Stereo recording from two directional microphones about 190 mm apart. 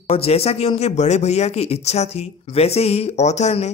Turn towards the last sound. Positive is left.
turn(degrees=35)  # may be behind; listen again after turning